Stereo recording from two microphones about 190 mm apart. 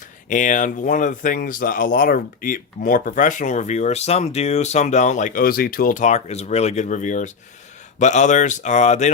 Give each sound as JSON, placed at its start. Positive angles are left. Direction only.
{"t": 0.3, "sound": "speech", "side_deg": 40}